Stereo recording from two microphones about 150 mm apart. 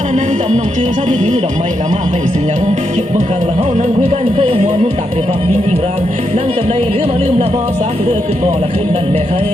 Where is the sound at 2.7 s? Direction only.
50° right (ahead or behind).